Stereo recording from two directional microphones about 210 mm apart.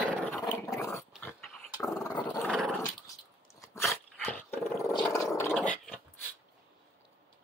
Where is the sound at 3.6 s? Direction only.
15° left (ahead or behind).